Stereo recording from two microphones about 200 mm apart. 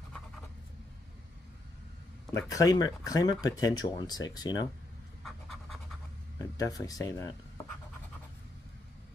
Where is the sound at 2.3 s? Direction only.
15° left (ahead or behind).